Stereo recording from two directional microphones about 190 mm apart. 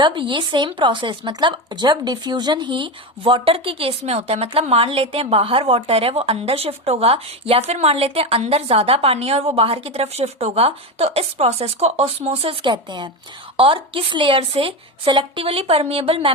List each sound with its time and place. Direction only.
0.0 s speech: 25° right (ahead or behind)